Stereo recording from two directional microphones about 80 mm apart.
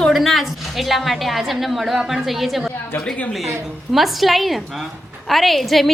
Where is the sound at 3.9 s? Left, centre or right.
Centre.